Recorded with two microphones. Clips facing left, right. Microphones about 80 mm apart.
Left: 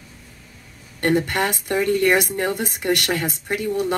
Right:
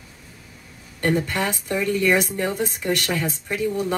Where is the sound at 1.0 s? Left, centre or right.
Left.